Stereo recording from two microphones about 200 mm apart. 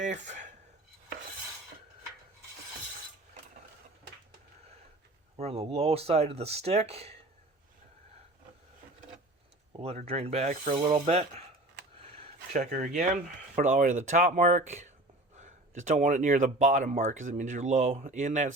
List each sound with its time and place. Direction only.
0.0 s speech: 40° right (ahead or behind)
5.4 s speech: 30° right (ahead or behind)
9.8 s speech: 30° right (ahead or behind)
11.9 s a sound: 30° right (ahead or behind)
13.6 s speech: 40° right (ahead or behind)